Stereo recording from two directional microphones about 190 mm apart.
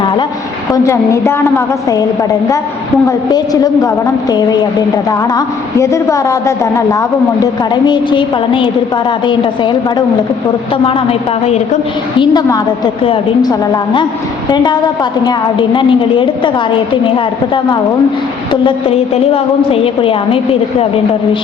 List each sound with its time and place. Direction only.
0.7 s a woman's voice: 15° left (ahead or behind)
3.1 s a woman's voice: 20° left (ahead or behind)
10.8 s a woman's voice: 30° left (ahead or behind)
12.2 s a woman's voice: 20° left (ahead or behind)